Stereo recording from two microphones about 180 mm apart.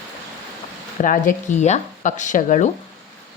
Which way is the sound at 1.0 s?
45° left (ahead or behind).